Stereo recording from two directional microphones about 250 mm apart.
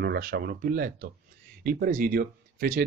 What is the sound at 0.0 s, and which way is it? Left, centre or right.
Speech, right.